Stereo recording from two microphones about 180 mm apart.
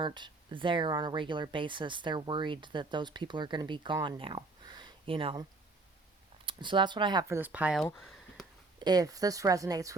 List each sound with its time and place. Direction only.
0.0 s speech: 25° right (ahead or behind); by 7.9 s 5° right (ahead or behind)
7.9 s a sound: centre (ahead or behind)
8.8 s speech: 20° right (ahead or behind)